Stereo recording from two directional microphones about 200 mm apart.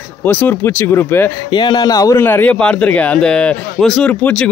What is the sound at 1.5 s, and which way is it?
Speech, 20° left (ahead or behind).